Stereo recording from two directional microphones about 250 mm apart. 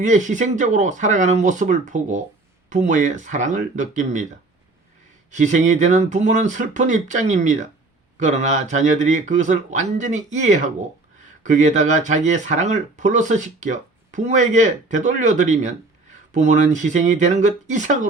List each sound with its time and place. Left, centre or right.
0.0 s speech: right
5.3 s speech: right